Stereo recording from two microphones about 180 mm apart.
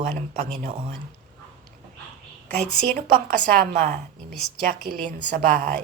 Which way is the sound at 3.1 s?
50° right (ahead or behind).